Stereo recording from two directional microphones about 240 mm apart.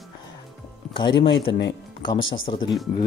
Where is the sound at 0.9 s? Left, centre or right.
Centre.